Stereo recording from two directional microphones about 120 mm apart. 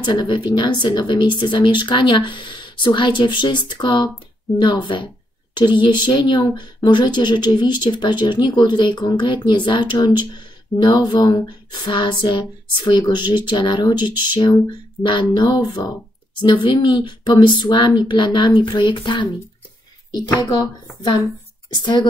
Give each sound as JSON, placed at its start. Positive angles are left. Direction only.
{"t": 0.0, "sound": "speech", "side_deg": 40}